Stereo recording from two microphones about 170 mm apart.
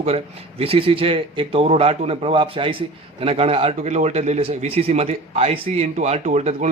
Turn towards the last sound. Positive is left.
turn(degrees=-40)  # may be behind; listen again after turning